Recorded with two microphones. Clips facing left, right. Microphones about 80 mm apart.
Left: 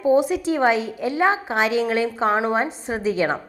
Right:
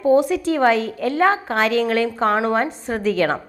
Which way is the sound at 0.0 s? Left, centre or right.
Centre.